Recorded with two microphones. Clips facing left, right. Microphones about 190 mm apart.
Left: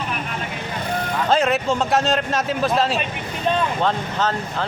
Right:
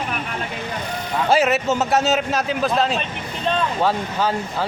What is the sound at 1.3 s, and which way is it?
A man's voice, 5° right (ahead or behind).